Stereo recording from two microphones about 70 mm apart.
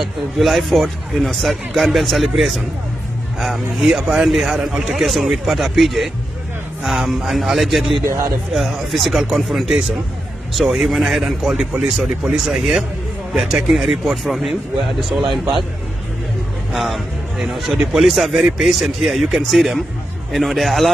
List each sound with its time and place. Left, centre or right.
0.0 s speech: centre
8.0 s speech: right
8.5 s a man's voice: centre
16.7 s speech: centre